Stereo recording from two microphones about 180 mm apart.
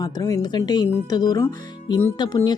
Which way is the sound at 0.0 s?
20° left (ahead or behind).